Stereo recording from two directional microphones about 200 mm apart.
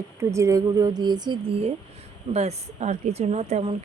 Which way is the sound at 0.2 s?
15° right (ahead or behind).